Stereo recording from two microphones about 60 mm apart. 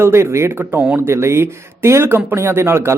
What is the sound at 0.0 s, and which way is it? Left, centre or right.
Speech, right.